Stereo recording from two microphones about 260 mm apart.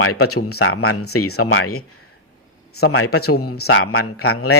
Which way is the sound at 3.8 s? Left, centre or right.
Left.